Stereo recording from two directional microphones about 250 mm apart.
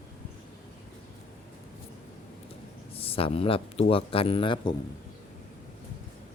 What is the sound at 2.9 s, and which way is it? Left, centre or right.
Speech, left.